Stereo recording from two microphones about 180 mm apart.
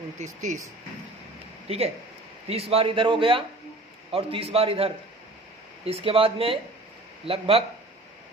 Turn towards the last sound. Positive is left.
turn(degrees=-30)  # may be behind; listen again after turning